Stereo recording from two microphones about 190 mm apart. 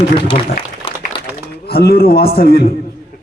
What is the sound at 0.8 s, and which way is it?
Applause, 30° left (ahead or behind).